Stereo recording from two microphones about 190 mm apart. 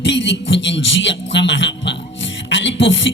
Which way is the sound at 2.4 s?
70° left (ahead or behind).